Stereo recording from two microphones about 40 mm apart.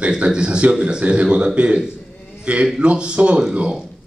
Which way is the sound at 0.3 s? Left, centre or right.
Right.